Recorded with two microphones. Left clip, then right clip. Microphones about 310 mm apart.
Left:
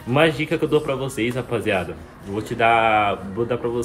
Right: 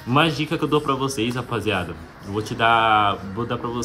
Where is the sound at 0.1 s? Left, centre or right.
Centre.